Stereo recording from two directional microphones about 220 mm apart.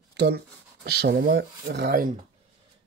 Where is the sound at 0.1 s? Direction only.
50° right (ahead or behind).